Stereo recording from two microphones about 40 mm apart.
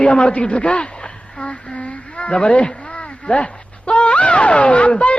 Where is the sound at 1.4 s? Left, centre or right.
Left.